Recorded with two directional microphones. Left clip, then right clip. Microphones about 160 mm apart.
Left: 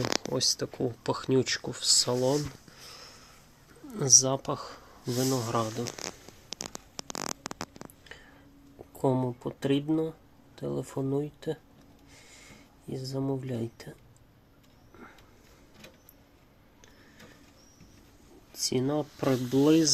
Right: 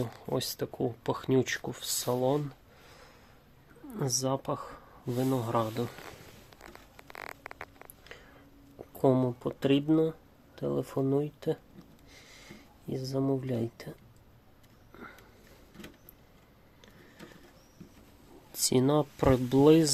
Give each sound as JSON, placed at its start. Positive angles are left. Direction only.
{"t": 0.3, "sound": "speech", "side_deg": -15}
{"t": 3.8, "sound": "speech", "side_deg": -5}
{"t": 9.0, "sound": "speech", "side_deg": -15}
{"t": 13.0, "sound": "speech", "side_deg": -15}
{"t": 18.5, "sound": "speech", "side_deg": -35}